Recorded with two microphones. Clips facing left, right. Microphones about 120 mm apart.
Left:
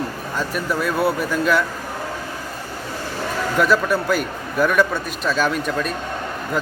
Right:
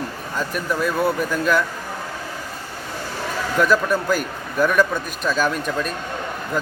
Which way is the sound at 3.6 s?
5° left (ahead or behind).